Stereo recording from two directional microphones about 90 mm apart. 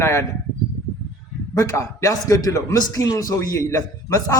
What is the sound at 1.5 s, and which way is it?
A man's voice, 40° left (ahead or behind).